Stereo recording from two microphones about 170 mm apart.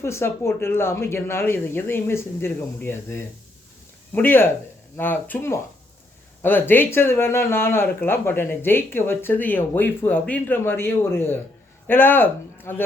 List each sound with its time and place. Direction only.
0.0 s speech: 15° left (ahead or behind)